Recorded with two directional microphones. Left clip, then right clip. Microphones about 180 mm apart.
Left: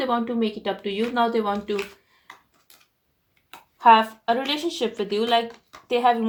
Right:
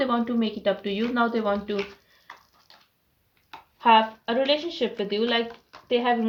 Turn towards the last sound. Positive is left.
turn(degrees=40)  # may be behind; listen again after turning